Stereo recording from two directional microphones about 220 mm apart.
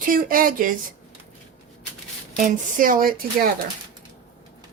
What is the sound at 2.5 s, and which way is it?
A woman's voice, 40° right (ahead or behind).